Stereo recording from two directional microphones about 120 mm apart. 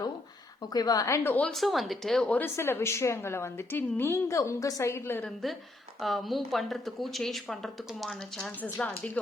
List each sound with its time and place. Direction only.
0.7 s a woman's voice: 30° left (ahead or behind); by 1.5 s 15° left (ahead or behind)
1.5 s a woman's voice: centre (ahead or behind); by 5.3 s 20° left (ahead or behind)
6.0 s speech: centre (ahead or behind)
8.6 s speech: 15° left (ahead or behind)